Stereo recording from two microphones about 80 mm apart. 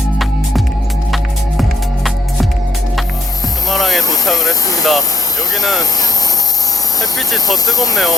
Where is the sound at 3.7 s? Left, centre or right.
Centre.